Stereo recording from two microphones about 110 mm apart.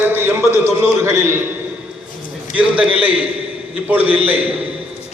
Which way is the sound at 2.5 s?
10° right (ahead or behind).